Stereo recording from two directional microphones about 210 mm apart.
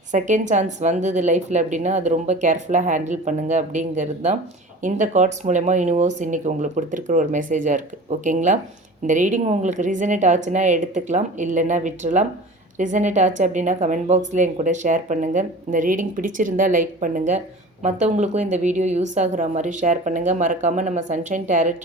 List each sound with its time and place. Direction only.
0.1 s speech: 35° right (ahead or behind)